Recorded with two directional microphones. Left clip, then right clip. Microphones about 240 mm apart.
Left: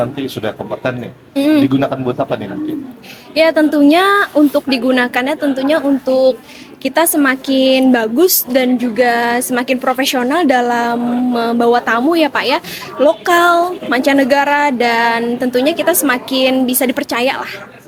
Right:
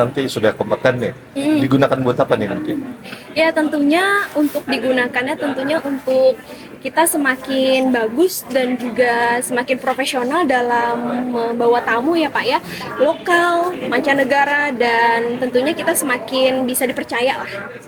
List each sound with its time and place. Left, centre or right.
0.4 s speech: right
1.4 s speech: left
1.7 s speech: right
3.3 s speech: left